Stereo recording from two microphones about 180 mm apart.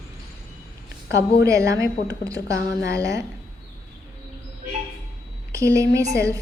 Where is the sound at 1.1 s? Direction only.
65° left (ahead or behind).